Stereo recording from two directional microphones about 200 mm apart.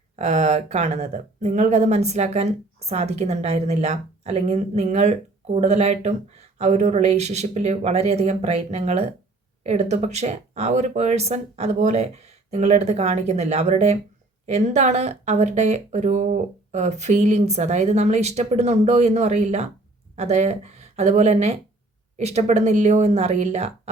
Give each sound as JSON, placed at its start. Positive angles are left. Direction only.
{"t": 0.2, "sound": "speech", "side_deg": -35}